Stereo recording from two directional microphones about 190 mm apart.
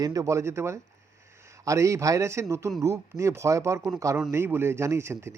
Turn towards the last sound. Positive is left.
turn(degrees=-15)  # may be behind; listen again after turning